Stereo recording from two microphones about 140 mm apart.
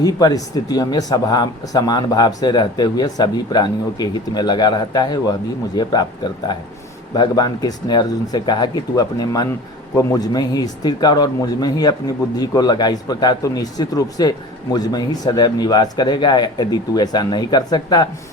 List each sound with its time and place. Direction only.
0.0 s speech: 25° left (ahead or behind)